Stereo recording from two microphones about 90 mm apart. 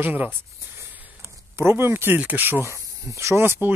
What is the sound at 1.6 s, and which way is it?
Speech, 25° right (ahead or behind).